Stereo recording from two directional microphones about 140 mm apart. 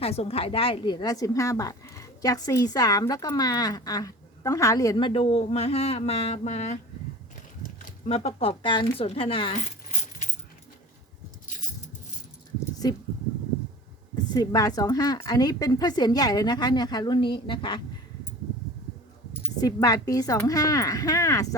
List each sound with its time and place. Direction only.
0.0 s a woman's voice: 45° left (ahead or behind)
8.0 s speech: 50° left (ahead or behind)
9.9 s coin: 60° left (ahead or behind)
12.8 s a woman's voice: 30° left (ahead or behind)
14.3 s a woman's voice: 25° left (ahead or behind)
19.6 s a woman's voice: 25° left (ahead or behind)